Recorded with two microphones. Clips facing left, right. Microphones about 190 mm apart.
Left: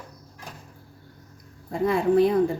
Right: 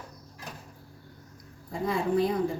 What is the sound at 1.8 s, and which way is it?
Speech, 60° left (ahead or behind).